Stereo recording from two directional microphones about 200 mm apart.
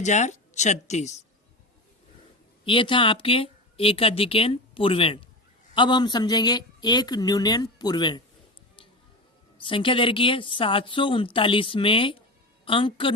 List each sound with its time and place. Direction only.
0.0 s speech: 35° left (ahead or behind)
2.6 s a woman's voice: 25° left (ahead or behind)
9.6 s a woman's voice: 25° left (ahead or behind)